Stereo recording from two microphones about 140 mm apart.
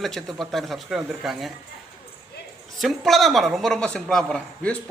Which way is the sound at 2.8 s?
Centre (ahead or behind).